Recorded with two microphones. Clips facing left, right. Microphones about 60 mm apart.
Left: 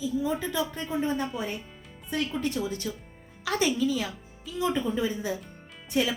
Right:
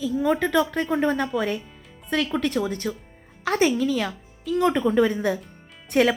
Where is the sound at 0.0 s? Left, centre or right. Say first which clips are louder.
Right 6 dB; right.